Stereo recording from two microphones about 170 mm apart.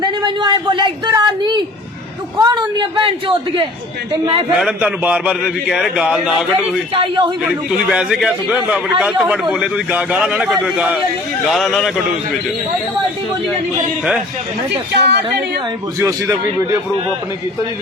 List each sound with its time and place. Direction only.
0.0 s a woman's voice: 25° right (ahead or behind)
4.5 s a man's voice: 5° right (ahead or behind)
6.9 s a man's voice: 30° right (ahead or behind)
7.9 s a man's voice: 5° right (ahead or behind)
14.9 s speech: 80° right
16.0 s a man's voice: 15° right (ahead or behind)